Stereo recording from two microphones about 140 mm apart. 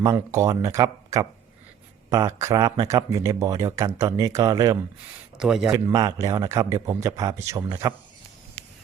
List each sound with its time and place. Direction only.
0.0 s a man's voice: 20° right (ahead or behind)
5.4 s a man's voice: 5° right (ahead or behind)
5.9 s a man's voice: 25° right (ahead or behind)